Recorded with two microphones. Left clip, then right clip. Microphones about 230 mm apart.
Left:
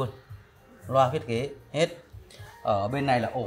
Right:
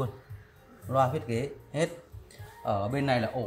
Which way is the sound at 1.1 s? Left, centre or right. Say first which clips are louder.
Left 3 dB; left.